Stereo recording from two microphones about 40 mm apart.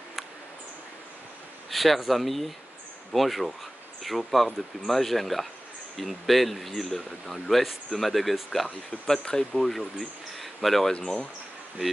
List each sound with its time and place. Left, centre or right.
1.7 s speech: centre
9.6 s speech: centre
10.9 s speech: centre